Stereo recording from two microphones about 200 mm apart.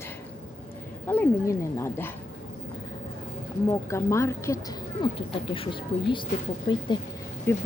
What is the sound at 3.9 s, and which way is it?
A woman's voice, 15° left (ahead or behind).